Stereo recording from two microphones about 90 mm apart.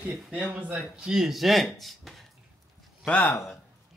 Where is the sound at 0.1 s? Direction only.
5° right (ahead or behind).